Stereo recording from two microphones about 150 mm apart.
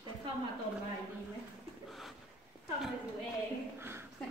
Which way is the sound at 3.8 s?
15° right (ahead or behind).